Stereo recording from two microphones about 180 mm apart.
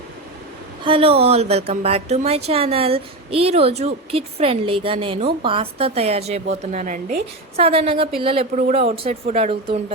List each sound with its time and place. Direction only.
0.9 s speech: 30° right (ahead or behind); by 7.6 s 45° right (ahead or behind)
7.6 s speech: 30° right (ahead or behind)